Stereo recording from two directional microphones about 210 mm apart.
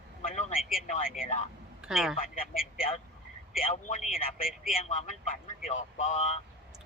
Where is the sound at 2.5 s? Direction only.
45° left (ahead or behind).